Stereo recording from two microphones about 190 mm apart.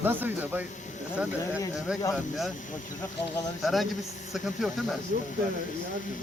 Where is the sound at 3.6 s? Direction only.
Centre (ahead or behind).